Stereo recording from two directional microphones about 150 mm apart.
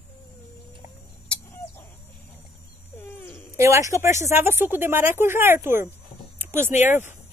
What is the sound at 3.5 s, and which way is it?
Speech, 20° right (ahead or behind).